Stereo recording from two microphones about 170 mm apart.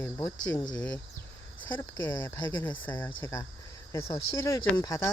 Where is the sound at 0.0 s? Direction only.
10° left (ahead or behind).